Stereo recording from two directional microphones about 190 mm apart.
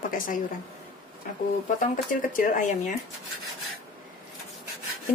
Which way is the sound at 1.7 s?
45° left (ahead or behind).